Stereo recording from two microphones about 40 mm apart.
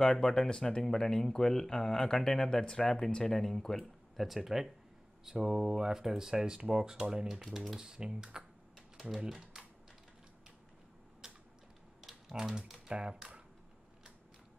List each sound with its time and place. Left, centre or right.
0.0 s speech: centre
4.4 s speech: centre
9.2 s typing: right
11.2 s a sound: centre
12.0 s typing: centre
12.8 s speech: centre